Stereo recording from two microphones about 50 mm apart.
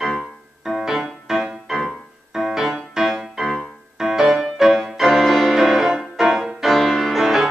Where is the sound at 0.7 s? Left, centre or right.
Centre.